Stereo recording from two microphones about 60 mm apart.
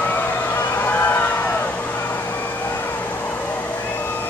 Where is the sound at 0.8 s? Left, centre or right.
Left.